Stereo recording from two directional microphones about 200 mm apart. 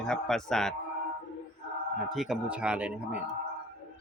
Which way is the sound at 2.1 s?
5° right (ahead or behind).